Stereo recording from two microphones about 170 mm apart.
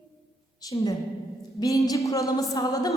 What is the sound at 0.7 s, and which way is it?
A woman's voice, 25° left (ahead or behind).